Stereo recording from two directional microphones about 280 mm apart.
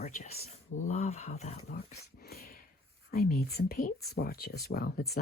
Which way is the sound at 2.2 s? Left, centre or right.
Left.